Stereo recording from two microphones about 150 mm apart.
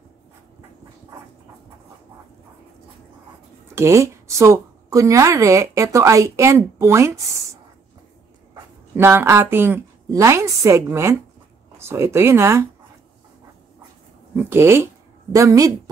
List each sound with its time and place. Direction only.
3.7 s a woman's voice: 20° right (ahead or behind)
8.9 s a woman's voice: 15° right (ahead or behind)
14.3 s a woman's voice: 15° right (ahead or behind)